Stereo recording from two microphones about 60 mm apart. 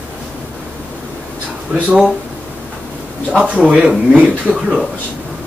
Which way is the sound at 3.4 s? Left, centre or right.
Centre.